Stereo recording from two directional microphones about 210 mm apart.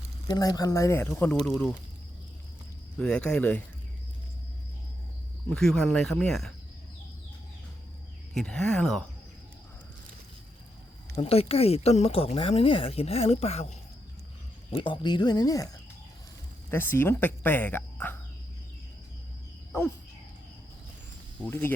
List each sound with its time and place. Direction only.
0.3 s speech: 15° left (ahead or behind); by 1.7 s centre (ahead or behind)
3.0 s speech: 5° left (ahead or behind)
5.5 s speech: centre (ahead or behind)
8.3 s speech: centre (ahead or behind)
11.1 s speech: 30° left (ahead or behind); by 18.2 s 10° left (ahead or behind)
21.4 s speech: 10° left (ahead or behind)